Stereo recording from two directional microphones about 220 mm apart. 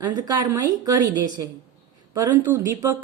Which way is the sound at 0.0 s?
20° right (ahead or behind).